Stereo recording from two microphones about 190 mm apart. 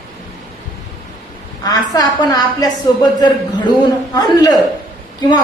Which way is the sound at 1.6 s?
20° left (ahead or behind).